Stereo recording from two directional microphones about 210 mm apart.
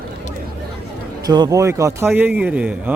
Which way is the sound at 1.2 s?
20° right (ahead or behind).